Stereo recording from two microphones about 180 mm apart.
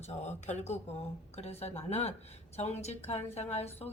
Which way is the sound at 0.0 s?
40° left (ahead or behind).